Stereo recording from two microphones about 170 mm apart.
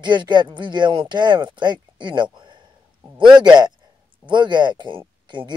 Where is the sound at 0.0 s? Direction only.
25° right (ahead or behind).